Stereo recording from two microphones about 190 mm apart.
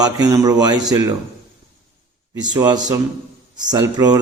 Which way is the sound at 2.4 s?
20° right (ahead or behind).